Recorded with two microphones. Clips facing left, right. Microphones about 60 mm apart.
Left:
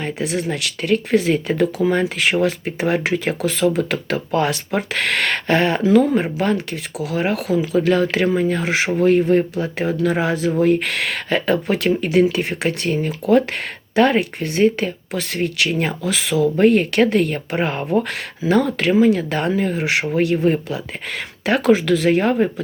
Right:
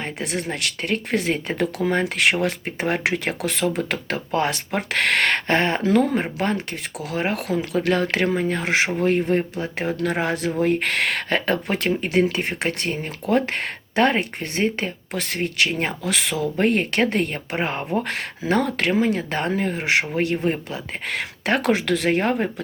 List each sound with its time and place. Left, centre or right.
0.0 s speech: right
1.8 s speech: right
2.4 s speech: right
4.9 s speech: right
7.9 s speech: right
10.0 s speech: right
10.6 s speech: right
11.7 s speech: right
21.1 s speech: right
21.6 s speech: right
22.1 s speech: right